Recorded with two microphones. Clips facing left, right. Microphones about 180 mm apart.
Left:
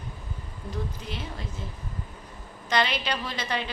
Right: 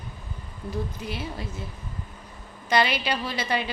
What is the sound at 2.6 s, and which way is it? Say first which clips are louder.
A woman's voice: right 3 dB; 10° right (ahead or behind).